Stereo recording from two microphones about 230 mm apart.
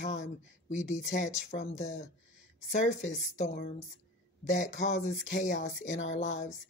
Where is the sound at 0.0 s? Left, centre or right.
Left.